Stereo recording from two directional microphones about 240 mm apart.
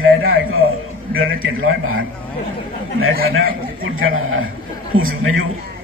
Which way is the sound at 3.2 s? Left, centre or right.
Right.